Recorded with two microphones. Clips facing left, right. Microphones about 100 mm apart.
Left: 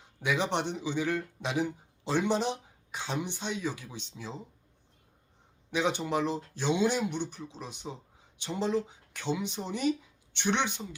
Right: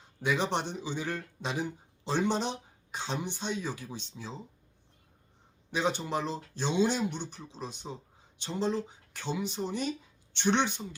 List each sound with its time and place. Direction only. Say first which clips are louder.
0.3 s speech: even; 15° left (ahead or behind)
5.7 s speech: left 1 dB; 15° left (ahead or behind)